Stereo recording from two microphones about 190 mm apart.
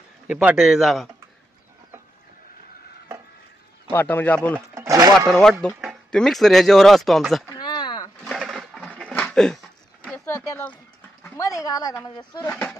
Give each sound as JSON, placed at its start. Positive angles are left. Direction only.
{"t": 0.3, "sound": "speech", "side_deg": -5}
{"t": 3.9, "sound": "speech", "side_deg": 10}
{"t": 4.6, "sound": "speech", "side_deg": -15}
{"t": 5.3, "sound": "speech", "side_deg": 0}
{"t": 7.4, "sound": "a sound", "side_deg": 20}
{"t": 8.2, "sound": "sewing machine", "side_deg": 0}
{"t": 8.8, "sound": "a sound", "side_deg": 5}
{"t": 10.2, "sound": "speech", "side_deg": 15}
{"t": 12.4, "sound": "speech", "side_deg": 5}